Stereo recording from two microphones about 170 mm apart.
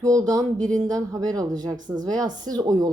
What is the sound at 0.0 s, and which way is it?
Speech, 20° right (ahead or behind).